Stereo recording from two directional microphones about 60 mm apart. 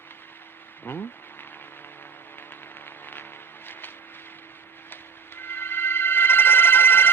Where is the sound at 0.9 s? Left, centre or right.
Left.